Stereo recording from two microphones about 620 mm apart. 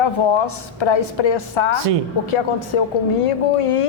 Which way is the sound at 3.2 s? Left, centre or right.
Left.